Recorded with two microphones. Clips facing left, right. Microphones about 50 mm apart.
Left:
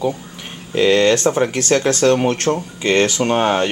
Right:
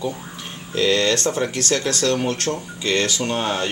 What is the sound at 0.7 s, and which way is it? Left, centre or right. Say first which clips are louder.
Speech: left 5 dB; left.